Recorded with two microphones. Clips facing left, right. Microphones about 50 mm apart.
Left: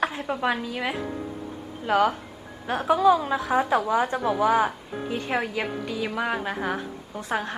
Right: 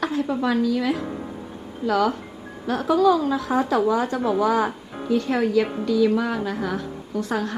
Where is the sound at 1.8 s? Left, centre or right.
Left.